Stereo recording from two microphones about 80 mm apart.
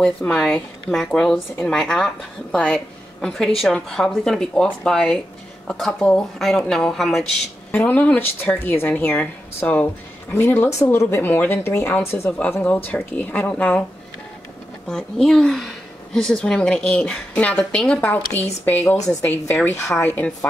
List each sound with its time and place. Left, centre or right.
0.0 s speech: centre
7.7 s speech: left
12.6 s speech: centre
14.9 s speech: centre; by 19.8 s left
20.2 s speech: centre